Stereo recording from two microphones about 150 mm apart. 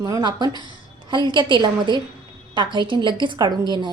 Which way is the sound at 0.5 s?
30° left (ahead or behind).